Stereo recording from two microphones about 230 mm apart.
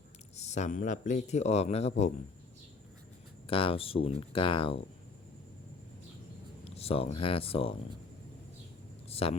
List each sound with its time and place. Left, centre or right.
0.3 s speech: left
3.4 s speech: left
6.7 s speech: left
9.2 s speech: left